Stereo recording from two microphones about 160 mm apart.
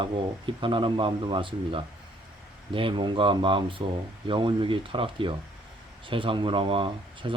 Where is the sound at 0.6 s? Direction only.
30° right (ahead or behind).